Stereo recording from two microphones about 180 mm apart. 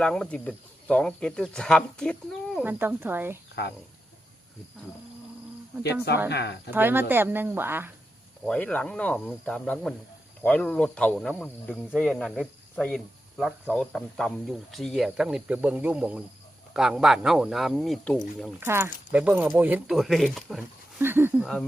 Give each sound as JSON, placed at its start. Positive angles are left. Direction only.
{"t": 0.0, "sound": "speech", "side_deg": 5}
{"t": 2.6, "sound": "speech", "side_deg": -10}
{"t": 3.5, "sound": "speech", "side_deg": 65}
{"t": 6.3, "sound": "speech", "side_deg": 70}
{"t": 6.7, "sound": "speech", "side_deg": -10}
{"t": 8.4, "sound": "speech", "side_deg": 5}
{"t": 18.6, "sound": "speech", "side_deg": -15}
{"t": 21.0, "sound": "speech", "side_deg": -10}
{"t": 21.4, "sound": "speech", "side_deg": 5}